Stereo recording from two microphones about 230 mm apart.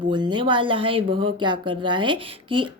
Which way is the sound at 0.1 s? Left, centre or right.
Centre.